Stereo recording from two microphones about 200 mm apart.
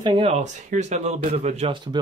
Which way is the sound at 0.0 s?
30° right (ahead or behind).